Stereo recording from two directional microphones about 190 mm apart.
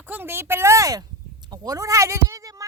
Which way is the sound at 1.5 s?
20° right (ahead or behind).